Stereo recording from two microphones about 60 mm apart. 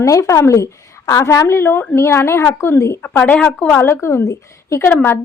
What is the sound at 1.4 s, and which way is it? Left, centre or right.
A woman's voice, left.